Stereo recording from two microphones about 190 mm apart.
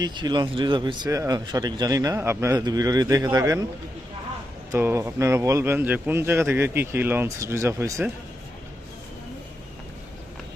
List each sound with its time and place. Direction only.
0.0 s speech: 25° right (ahead or behind)
4.7 s speech: 10° right (ahead or behind)